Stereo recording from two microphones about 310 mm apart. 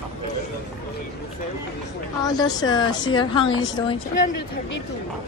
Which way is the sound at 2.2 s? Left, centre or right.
Centre.